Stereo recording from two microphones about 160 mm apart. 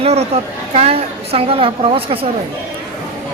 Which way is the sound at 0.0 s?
40° right (ahead or behind).